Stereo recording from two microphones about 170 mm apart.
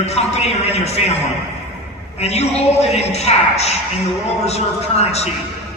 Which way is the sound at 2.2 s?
40° left (ahead or behind).